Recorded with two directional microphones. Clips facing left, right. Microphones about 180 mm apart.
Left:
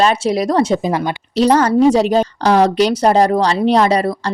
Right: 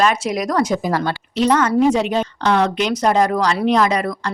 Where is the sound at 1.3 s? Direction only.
35° left (ahead or behind).